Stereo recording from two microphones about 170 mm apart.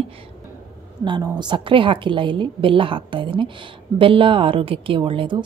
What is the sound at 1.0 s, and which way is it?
A woman's voice, 25° right (ahead or behind).